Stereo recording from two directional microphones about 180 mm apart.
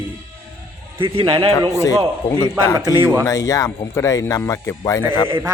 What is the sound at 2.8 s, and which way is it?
Speech, 20° right (ahead or behind).